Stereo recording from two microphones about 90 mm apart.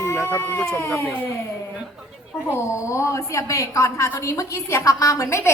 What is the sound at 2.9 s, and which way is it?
A woman's voice, 35° left (ahead or behind).